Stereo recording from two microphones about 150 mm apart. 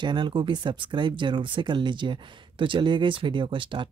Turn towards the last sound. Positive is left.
turn(degrees=-35)  # may be behind; listen again after turning